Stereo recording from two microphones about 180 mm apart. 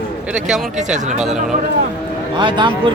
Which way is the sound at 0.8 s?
40° right (ahead or behind).